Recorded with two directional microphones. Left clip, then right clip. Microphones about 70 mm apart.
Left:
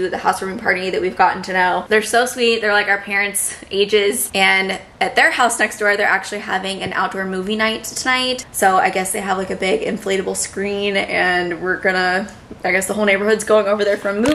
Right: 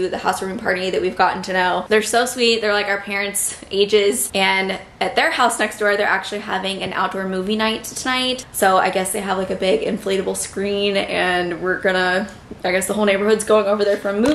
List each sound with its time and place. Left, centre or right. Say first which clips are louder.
0.1 s a woman's voice: left 3 dB; centre
0.8 s a woman's voice: left 1 dB; right; by 12.2 s centre
12.9 s a woman's voice: even; centre